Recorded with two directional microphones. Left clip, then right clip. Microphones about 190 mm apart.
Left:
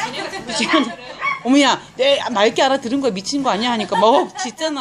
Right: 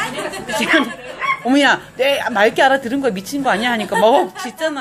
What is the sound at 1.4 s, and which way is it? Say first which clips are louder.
Speech: right 1 dB; 20° left (ahead or behind).